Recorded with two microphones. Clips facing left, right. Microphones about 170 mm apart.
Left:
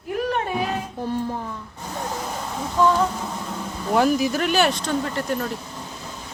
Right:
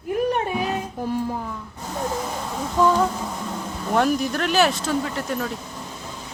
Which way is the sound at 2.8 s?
10° right (ahead or behind).